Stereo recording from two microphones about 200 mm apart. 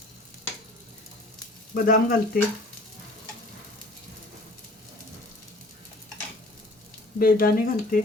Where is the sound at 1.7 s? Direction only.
45° left (ahead or behind).